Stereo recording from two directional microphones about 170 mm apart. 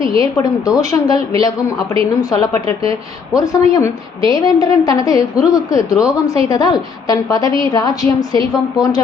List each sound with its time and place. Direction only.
0.2 s a woman's voice: 20° left (ahead or behind)